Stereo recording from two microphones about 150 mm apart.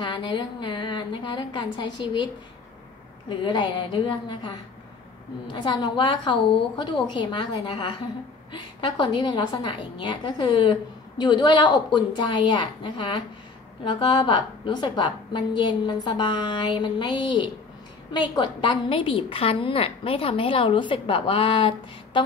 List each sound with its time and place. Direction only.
0.0 s a woman's voice: 30° left (ahead or behind)
3.3 s a woman's voice: 30° left (ahead or behind)